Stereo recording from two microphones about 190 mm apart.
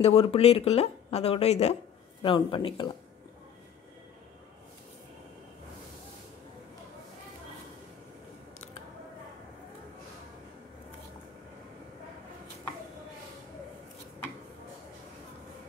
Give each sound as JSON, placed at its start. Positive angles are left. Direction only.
{"t": 0.0, "sound": "speech", "side_deg": 30}